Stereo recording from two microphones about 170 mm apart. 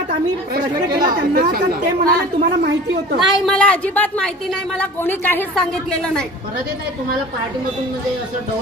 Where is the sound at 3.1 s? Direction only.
Centre (ahead or behind).